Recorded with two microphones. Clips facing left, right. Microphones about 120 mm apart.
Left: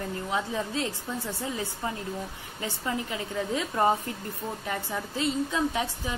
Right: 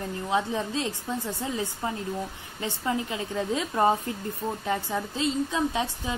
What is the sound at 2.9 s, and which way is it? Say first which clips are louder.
A woman's voice: right 3 dB; 20° right (ahead or behind).